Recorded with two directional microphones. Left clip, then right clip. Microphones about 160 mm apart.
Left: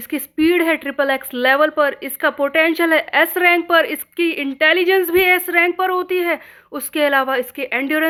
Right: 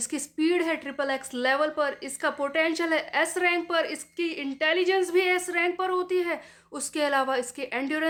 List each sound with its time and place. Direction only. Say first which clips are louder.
0.1 s a woman's voice: left 10 dB; 30° left (ahead or behind)